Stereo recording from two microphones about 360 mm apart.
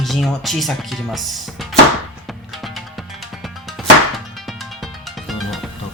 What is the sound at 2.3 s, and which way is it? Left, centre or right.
Music, centre.